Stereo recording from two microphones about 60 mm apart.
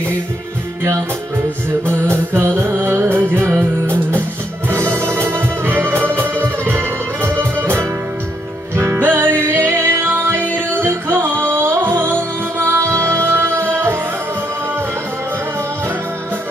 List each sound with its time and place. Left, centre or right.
1.9 s music: right
4.7 s music: right